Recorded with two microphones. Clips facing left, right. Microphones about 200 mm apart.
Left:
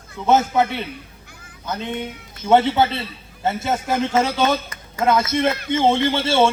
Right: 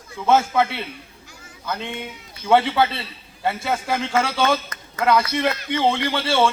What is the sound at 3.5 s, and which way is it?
A man's voice, 20° left (ahead or behind).